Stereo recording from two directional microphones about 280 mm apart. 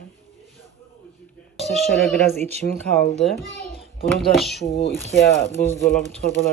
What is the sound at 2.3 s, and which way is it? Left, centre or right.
Speech, right.